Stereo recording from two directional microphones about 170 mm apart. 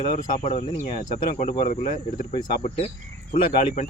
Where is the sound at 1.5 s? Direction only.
55° left (ahead or behind).